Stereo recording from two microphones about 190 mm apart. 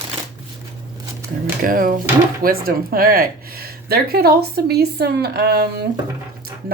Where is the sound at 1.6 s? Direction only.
45° right (ahead or behind).